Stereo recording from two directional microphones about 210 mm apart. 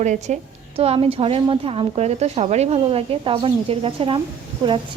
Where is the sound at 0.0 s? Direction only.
35° right (ahead or behind).